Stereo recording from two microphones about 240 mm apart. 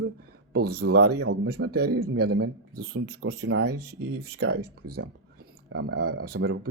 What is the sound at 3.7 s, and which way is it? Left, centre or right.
Speech, right.